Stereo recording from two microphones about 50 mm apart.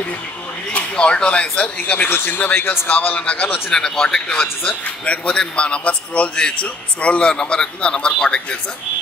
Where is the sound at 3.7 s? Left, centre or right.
Centre.